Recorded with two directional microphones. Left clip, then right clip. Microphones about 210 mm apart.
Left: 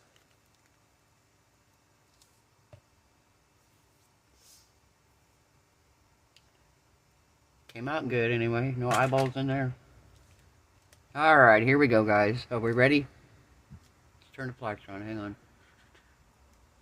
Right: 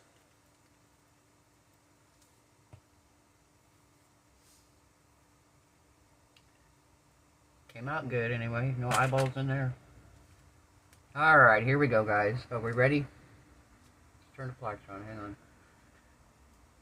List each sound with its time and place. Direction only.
7.7 s speech: 60° left (ahead or behind)
11.1 s speech: 55° left (ahead or behind)
14.3 s speech: 55° left (ahead or behind)